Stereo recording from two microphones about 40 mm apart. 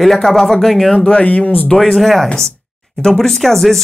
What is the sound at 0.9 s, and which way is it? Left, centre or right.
Speech, left.